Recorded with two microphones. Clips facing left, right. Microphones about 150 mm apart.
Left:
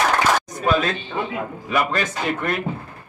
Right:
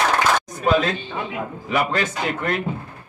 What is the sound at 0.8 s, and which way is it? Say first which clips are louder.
A man's voice: even; 15° right (ahead or behind).